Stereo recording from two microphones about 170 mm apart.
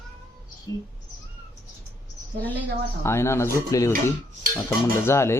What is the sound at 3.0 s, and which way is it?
Speech, 15° left (ahead or behind).